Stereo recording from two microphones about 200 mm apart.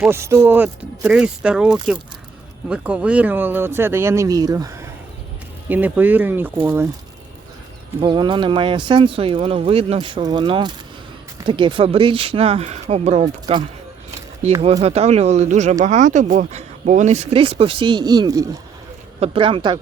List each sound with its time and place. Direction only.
0.0 s speech: 10° right (ahead or behind)
8.0 s speech: 25° right (ahead or behind)